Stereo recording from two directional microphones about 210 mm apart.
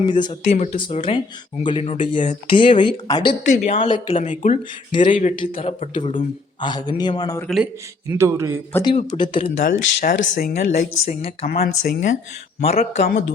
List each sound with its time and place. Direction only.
0.0 s a man's voice: 20° left (ahead or behind)
3.5 s a woman's voice: 35° left (ahead or behind); by 7.4 s 20° left (ahead or behind)
7.4 s speech: centre (ahead or behind)
8.2 s a man's voice: 15° right (ahead or behind)
8.7 s a man's voice: 20° left (ahead or behind)
9.6 s a woman's voice: 40° left (ahead or behind)
11.6 s a woman's voice: 40° left (ahead or behind)
12.6 s a woman's voice: 30° left (ahead or behind)